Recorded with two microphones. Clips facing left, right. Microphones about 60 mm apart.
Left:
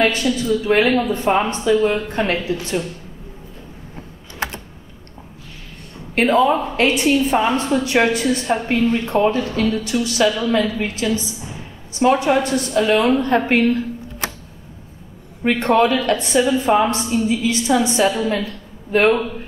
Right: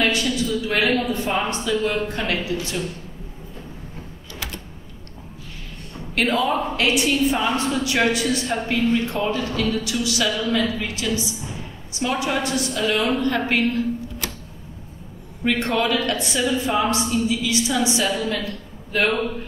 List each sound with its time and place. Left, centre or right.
0.0 s a woman's voice: left
6.1 s a woman's voice: left
15.4 s a woman's voice: left